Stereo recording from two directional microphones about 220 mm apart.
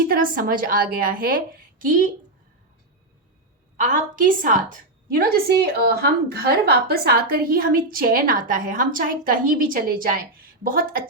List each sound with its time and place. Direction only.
0.1 s a woman's voice: 40° right (ahead or behind)
3.8 s a woman's voice: 40° right (ahead or behind)